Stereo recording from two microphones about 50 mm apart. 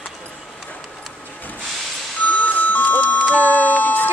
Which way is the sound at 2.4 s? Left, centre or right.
Left.